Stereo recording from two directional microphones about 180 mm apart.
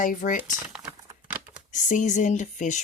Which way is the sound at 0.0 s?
50° left (ahead or behind).